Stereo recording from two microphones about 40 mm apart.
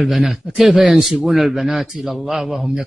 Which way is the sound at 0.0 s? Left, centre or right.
Centre.